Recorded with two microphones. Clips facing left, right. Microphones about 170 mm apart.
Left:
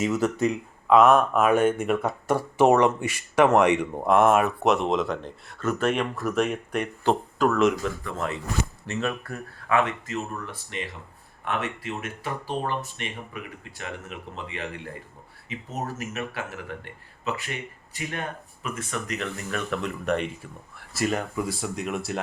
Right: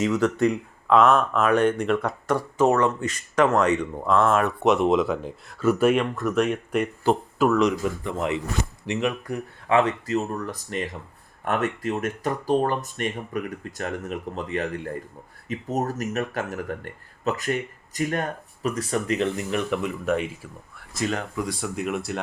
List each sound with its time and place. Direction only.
0.0 s speech: 5° left (ahead or behind)
4.4 s speech: centre (ahead or behind)
8.0 s speech: 15° right (ahead or behind)
9.6 s speech: 30° right (ahead or behind); by 22.2 s centre (ahead or behind)